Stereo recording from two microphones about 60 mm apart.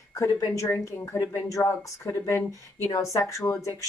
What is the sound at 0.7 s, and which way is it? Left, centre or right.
Speech, left.